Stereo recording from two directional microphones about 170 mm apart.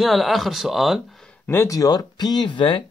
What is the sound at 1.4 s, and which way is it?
Speech, 15° left (ahead or behind).